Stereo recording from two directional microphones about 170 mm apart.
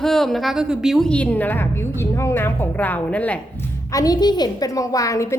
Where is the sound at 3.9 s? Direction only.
20° left (ahead or behind).